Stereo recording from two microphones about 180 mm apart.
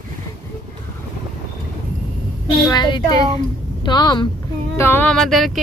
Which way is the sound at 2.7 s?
25° left (ahead or behind).